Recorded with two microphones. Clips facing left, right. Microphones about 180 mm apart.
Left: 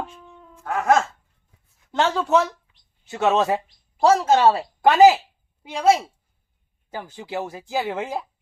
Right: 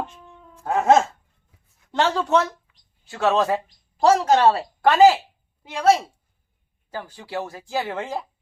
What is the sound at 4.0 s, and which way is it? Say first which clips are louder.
Speech: even; centre (ahead or behind).